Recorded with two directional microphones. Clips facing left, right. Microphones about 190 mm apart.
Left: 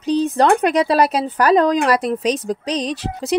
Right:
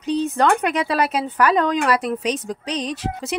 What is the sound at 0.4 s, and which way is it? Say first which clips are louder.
Speech: left 5 dB; 35° left (ahead or behind).